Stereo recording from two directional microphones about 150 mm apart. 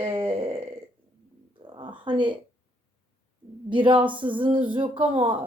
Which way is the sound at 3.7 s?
35° right (ahead or behind).